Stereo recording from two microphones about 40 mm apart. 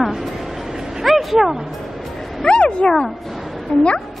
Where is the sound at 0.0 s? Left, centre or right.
Centre.